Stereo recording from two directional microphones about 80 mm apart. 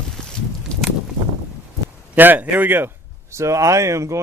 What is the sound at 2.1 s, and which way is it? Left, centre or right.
Speech, right.